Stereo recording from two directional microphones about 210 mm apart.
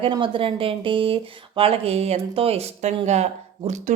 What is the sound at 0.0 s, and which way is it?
A woman's voice, 25° right (ahead or behind).